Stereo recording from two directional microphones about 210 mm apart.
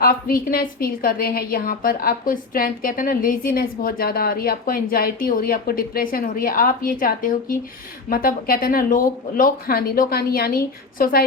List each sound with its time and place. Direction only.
0.0 s a woman's voice: 45° left (ahead or behind)